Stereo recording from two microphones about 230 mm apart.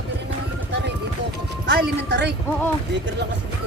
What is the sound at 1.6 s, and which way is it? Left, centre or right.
Speech, right.